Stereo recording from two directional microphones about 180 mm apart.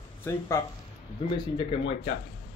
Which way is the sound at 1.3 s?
25° left (ahead or behind).